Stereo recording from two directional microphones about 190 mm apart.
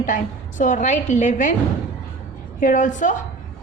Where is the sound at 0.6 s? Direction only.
40° left (ahead or behind).